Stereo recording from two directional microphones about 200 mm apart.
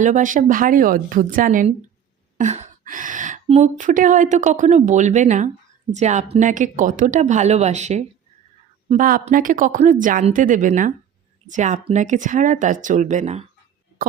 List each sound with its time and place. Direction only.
0.0 s a woman's voice: 40° right (ahead or behind)